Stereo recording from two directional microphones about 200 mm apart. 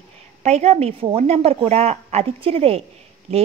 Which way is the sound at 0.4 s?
35° right (ahead or behind).